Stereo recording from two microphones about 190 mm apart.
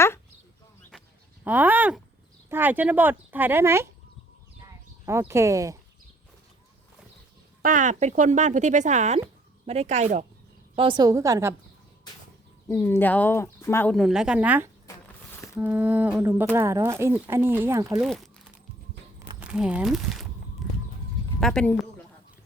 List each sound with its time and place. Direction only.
1.5 s speech: 10° right (ahead or behind)
4.6 s a sound: 15° right (ahead or behind)
7.6 s speech: 45° right (ahead or behind)
10.8 s speech: 25° right (ahead or behind)
12.6 s speech: 10° left (ahead or behind)
13.9 s a woman's voice: centre (ahead or behind)
14.8 s a sound: 10° left (ahead or behind)
15.5 s speech: 10° right (ahead or behind)
18.0 s a woman's voice: centre (ahead or behind)
19.4 s speech: 5° right (ahead or behind)
20.6 s clip-clop: centre (ahead or behind)
21.4 s a woman's voice: 5° left (ahead or behind)